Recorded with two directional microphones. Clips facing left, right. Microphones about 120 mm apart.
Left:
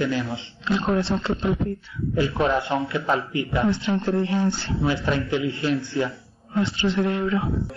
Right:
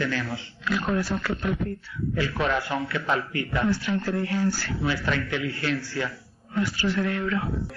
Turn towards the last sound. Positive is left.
turn(degrees=25)  # may be behind; listen again after turning